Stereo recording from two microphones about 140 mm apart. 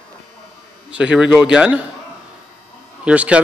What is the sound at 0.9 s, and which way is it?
Speech, 5° right (ahead or behind).